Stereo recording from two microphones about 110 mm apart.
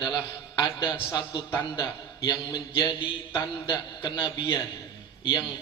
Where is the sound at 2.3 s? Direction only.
45° left (ahead or behind).